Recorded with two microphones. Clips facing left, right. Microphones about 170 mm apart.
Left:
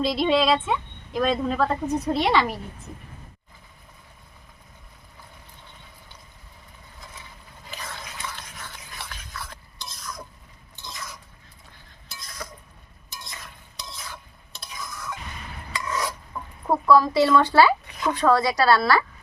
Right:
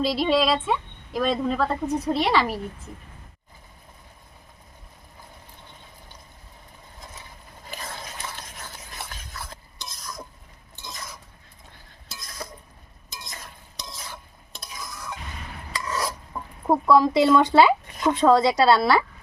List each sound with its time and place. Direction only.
0.0 s a woman's voice: 5° right (ahead or behind)
7.8 s a sound: 35° right (ahead or behind)
15.7 s stir: 35° right (ahead or behind)
16.6 s speech: 20° right (ahead or behind)